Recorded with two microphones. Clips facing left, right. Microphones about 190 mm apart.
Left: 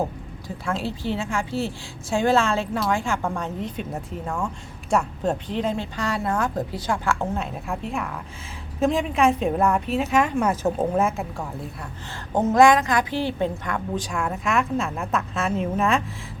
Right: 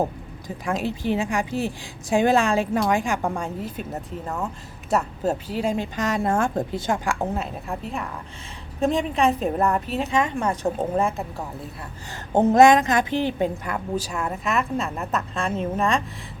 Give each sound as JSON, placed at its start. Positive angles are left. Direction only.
{"t": 0.4, "sound": "a woman's voice", "side_deg": -15}
{"t": 7.3, "sound": "speech", "side_deg": 0}
{"t": 12.3, "sound": "a woman's voice", "side_deg": -25}